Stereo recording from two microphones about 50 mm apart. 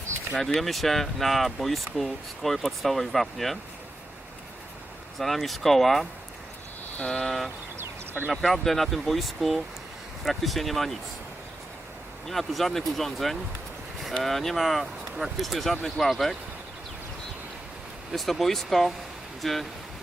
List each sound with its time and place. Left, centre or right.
0.3 s speech: centre
5.1 s speech: centre
7.1 s speech: centre
7.8 s a sound: right
8.3 s speech: centre
12.3 s speech: centre
18.1 s speech: centre